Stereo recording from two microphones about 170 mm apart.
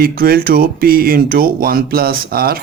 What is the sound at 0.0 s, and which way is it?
Speech, 60° right (ahead or behind).